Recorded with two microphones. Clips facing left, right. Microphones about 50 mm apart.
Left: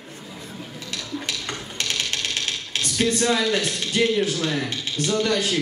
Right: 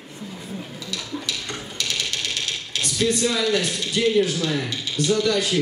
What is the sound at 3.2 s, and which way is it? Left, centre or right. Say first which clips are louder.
A man's voice: even; left.